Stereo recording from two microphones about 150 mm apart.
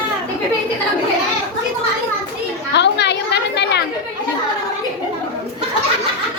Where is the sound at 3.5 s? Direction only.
90° left.